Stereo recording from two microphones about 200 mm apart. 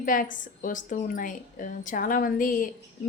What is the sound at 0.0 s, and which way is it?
A woman's voice, 45° left (ahead or behind).